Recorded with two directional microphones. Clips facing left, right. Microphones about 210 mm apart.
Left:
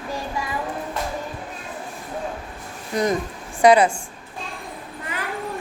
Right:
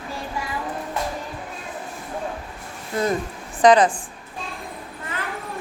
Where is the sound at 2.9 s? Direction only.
20° left (ahead or behind).